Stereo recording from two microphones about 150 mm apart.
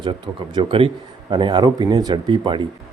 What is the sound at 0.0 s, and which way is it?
A man's voice, 35° right (ahead or behind).